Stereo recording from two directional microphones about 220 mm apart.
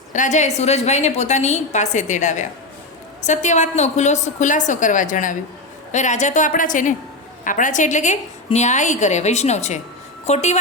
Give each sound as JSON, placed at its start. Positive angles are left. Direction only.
{"t": 0.1, "sound": "a woman's voice", "side_deg": 35}